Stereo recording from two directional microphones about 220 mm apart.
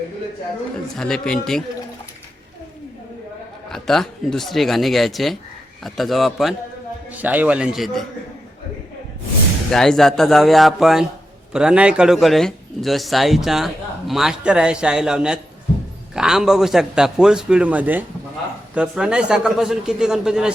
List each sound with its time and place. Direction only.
0.9 s speech: centre (ahead or behind)
3.7 s speech: centre (ahead or behind)
9.7 s speech: centre (ahead or behind)